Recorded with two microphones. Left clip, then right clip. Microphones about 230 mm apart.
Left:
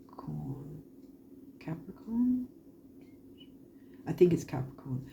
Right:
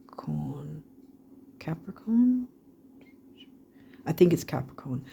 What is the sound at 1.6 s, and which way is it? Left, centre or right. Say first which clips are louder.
Whispering: right 5 dB; right.